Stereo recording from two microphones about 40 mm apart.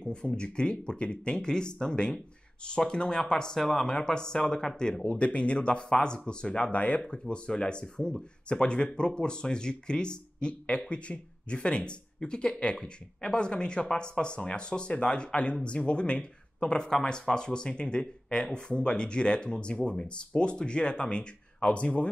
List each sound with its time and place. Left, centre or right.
0.1 s speech: left
5.1 s speech: left